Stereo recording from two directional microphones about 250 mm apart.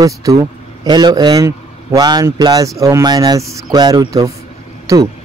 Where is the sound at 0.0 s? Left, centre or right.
Centre.